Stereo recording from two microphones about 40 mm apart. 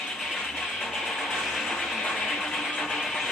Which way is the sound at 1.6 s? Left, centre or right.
Centre.